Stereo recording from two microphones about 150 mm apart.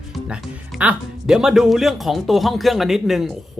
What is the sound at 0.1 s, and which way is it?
Speech, 5° right (ahead or behind).